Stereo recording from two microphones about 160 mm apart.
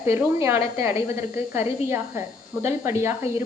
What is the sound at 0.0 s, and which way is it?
A woman's voice, 15° right (ahead or behind).